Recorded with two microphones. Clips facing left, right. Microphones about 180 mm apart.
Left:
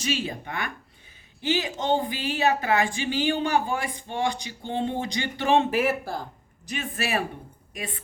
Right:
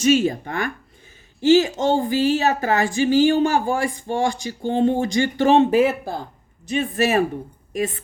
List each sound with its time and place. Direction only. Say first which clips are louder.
0.0 s speech: right 12 dB; 45° right (ahead or behind)
5.7 s speech: right 7 dB; 25° right (ahead or behind)
6.9 s speech: right 9 dB; 40° right (ahead or behind)